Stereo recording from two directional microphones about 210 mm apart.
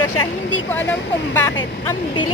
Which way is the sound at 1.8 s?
20° left (ahead or behind).